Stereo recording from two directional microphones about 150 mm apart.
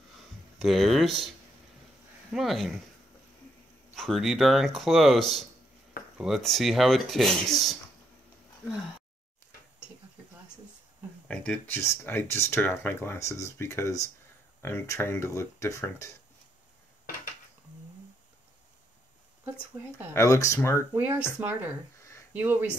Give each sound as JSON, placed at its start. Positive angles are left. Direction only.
{"t": 0.6, "sound": "speech", "side_deg": 0}
{"t": 2.3, "sound": "speech", "side_deg": 0}
{"t": 3.9, "sound": "speech", "side_deg": 0}
{"t": 11.2, "sound": "speech", "side_deg": 5}
{"t": 20.2, "sound": "speech", "side_deg": 20}
{"t": 20.9, "sound": "speech", "side_deg": -15}